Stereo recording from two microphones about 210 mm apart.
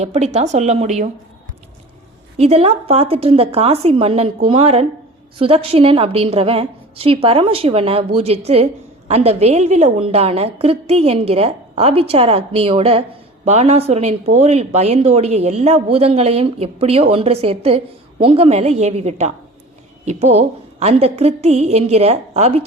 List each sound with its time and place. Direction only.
0.0 s a woman's voice: 30° right (ahead or behind)
2.4 s a woman's voice: 30° right (ahead or behind)